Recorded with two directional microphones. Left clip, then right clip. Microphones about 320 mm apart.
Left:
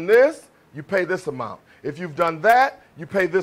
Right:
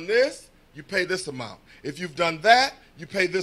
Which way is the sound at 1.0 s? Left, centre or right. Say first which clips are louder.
Left 4 dB; left.